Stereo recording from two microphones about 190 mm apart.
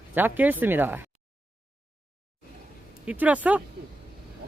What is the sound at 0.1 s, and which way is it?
Speech, 10° right (ahead or behind).